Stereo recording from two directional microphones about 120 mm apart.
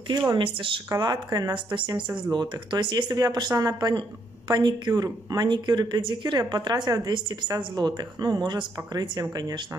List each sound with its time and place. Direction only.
0.1 s speech: 40° right (ahead or behind)
0.8 s speech: 30° right (ahead or behind)